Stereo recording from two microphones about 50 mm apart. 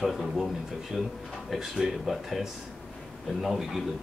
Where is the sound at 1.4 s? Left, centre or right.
Centre.